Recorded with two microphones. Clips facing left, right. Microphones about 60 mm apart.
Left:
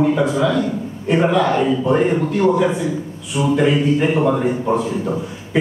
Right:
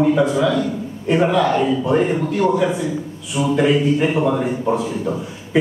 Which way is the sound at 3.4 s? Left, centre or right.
Centre.